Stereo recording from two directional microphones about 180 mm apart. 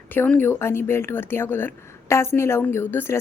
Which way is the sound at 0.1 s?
10° left (ahead or behind).